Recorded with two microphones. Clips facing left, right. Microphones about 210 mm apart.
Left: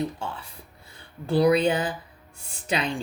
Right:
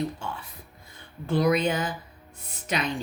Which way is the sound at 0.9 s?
35° left (ahead or behind).